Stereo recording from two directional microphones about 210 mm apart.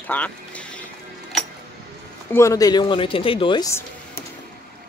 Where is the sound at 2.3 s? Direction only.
15° left (ahead or behind).